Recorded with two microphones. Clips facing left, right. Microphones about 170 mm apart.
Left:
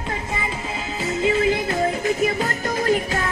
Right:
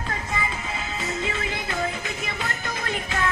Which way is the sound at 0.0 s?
25° left (ahead or behind).